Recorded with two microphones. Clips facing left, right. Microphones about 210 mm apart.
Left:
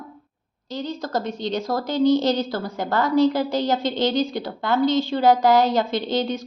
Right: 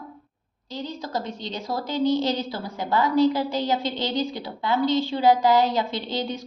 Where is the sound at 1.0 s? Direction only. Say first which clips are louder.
Left 5 dB; 50° left (ahead or behind).